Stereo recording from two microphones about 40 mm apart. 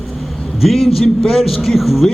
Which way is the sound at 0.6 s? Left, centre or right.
Centre.